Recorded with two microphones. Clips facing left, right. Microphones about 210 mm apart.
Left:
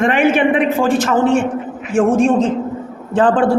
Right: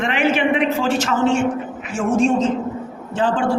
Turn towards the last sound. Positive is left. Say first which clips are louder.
# left 6 dB
turn(degrees=55)  # may be behind; listen again after turning